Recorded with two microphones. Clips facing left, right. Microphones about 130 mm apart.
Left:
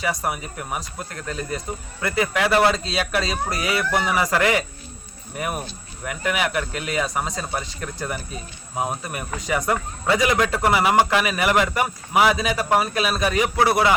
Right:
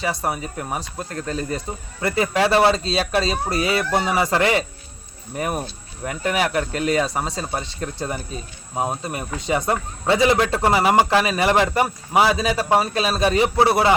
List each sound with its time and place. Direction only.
0.0 s speech: 30° right (ahead or behind)